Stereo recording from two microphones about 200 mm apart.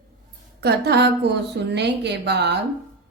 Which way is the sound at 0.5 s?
55° right (ahead or behind).